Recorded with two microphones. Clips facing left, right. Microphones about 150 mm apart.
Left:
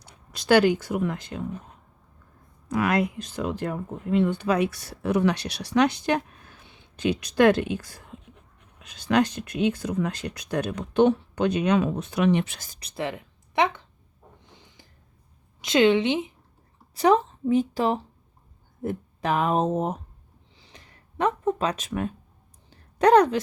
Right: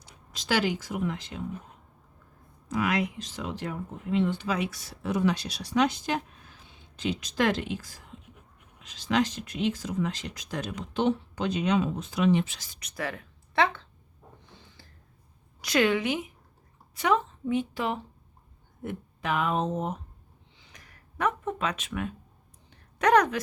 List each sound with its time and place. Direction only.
0.0 s speech: 60° left (ahead or behind)
2.6 s speech: 55° left (ahead or behind)
12.8 s speech: 25° left (ahead or behind)
14.5 s a sound: 15° left (ahead or behind)
15.6 s a woman's voice: 25° left (ahead or behind); by 20.0 s 45° left (ahead or behind)
20.6 s a sound: 30° left (ahead or behind)